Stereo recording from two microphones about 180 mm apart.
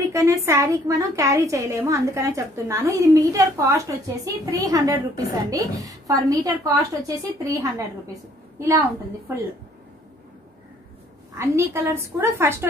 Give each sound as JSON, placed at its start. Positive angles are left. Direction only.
{"t": 0.1, "sound": "a woman's voice", "side_deg": -15}
{"t": 11.3, "sound": "a woman's voice", "side_deg": -15}